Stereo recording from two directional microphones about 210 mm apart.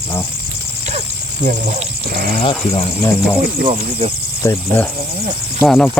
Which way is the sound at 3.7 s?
30° right (ahead or behind).